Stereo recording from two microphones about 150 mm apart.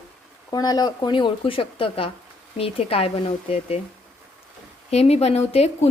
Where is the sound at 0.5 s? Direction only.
25° left (ahead or behind).